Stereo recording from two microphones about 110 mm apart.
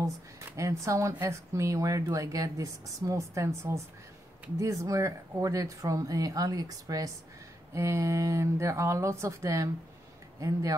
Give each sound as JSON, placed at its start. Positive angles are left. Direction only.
{"t": 0.6, "sound": "speech", "side_deg": -30}